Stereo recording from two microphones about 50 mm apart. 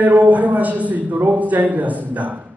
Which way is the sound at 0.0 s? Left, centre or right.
Right.